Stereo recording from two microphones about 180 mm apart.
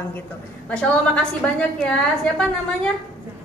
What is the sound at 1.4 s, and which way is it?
Speech, 5° left (ahead or behind).